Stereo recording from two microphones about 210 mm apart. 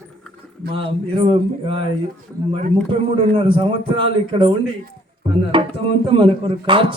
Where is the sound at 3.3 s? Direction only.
25° right (ahead or behind).